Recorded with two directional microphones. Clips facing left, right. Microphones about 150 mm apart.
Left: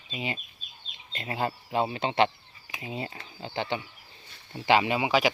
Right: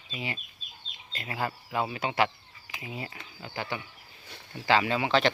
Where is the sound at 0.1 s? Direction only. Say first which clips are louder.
Left 3 dB; 20° left (ahead or behind).